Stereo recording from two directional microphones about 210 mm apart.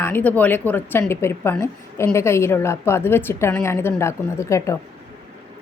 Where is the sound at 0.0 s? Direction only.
10° left (ahead or behind).